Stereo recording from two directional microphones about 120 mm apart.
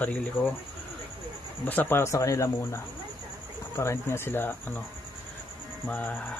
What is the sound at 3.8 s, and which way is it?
Speech, 20° left (ahead or behind).